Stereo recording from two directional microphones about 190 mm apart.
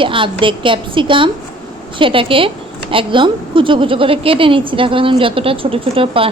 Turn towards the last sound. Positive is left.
turn(degrees=-30)  # may be behind; listen again after turning